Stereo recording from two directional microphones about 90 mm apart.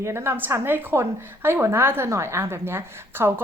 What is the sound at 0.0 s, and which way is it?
A woman's voice, 30° right (ahead or behind).